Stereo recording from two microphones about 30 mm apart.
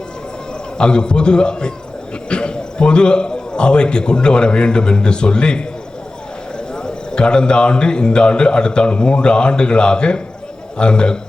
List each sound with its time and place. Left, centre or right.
0.8 s a man's voice: left
6.8 s a man's voice: left